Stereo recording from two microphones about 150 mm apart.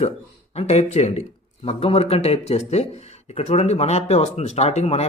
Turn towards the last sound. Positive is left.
turn(degrees=45)  # may be behind; listen again after turning